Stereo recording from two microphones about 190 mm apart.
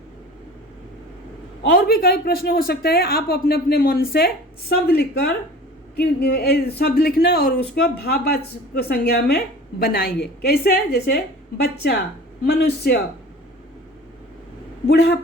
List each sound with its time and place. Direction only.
1.7 s a woman's voice: 55° left (ahead or behind)
14.8 s a woman's voice: 60° left (ahead or behind)